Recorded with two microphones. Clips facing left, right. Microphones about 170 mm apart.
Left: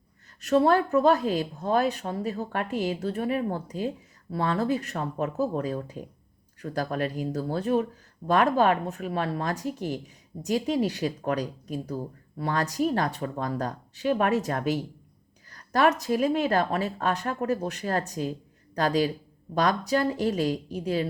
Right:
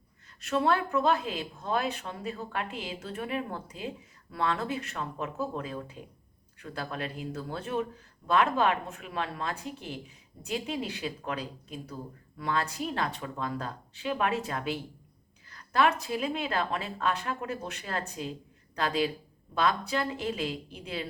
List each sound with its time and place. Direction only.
0.4 s speech: 40° left (ahead or behind)